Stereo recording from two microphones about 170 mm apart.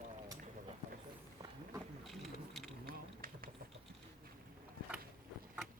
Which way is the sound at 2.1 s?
Centre (ahead or behind).